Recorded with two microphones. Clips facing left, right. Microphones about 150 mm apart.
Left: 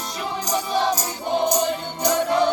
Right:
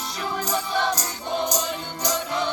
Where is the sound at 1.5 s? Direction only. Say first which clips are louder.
Left 6 dB; 55° left (ahead or behind).